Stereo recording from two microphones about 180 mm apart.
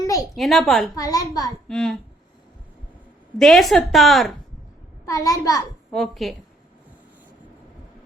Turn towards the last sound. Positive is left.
turn(degrees=0)  # may be behind; listen again after turning